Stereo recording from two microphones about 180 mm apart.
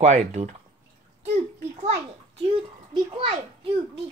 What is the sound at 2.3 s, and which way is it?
A child's voice, 30° right (ahead or behind).